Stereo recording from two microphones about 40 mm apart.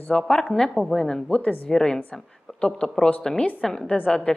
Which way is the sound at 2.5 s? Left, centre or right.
Centre.